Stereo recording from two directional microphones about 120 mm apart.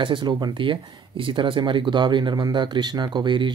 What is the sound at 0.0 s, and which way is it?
Speech, 40° right (ahead or behind).